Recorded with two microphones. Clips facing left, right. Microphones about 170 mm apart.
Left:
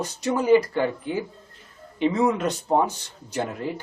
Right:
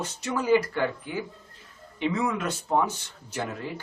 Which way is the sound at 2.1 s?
30° left (ahead or behind).